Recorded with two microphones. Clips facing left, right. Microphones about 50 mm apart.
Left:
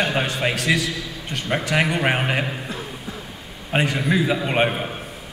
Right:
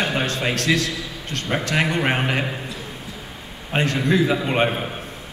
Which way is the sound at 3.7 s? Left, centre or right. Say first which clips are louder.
Right 1 dB; centre.